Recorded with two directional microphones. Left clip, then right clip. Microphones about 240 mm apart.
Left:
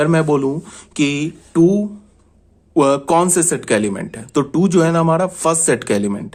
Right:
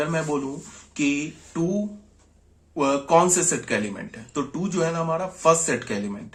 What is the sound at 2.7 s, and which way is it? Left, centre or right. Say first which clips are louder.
Speech: left 6 dB; left.